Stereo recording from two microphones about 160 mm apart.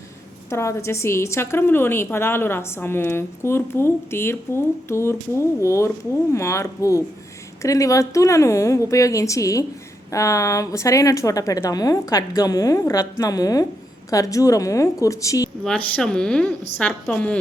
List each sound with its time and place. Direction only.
0.5 s a woman's voice: 20° left (ahead or behind)
15.6 s a woman's voice: 5° left (ahead or behind)